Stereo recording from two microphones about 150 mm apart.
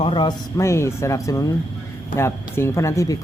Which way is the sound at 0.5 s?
20° left (ahead or behind).